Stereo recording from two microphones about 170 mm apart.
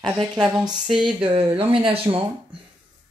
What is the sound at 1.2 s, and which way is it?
Speech, 30° right (ahead or behind).